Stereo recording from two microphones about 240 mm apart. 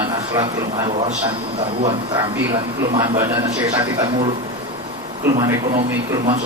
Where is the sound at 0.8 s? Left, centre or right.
Right.